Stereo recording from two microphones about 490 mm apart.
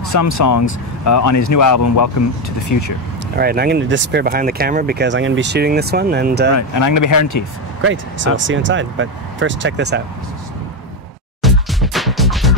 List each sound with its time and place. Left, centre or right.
0.0 s speech: left
3.3 s speech: centre
6.5 s speech: left
7.8 s speech: right
11.4 s music: centre